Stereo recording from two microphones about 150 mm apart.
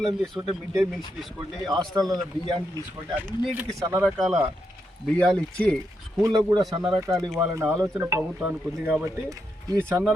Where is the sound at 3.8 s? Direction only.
20° right (ahead or behind).